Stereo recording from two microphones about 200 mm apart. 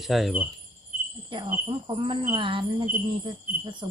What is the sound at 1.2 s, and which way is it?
Speech, 25° right (ahead or behind).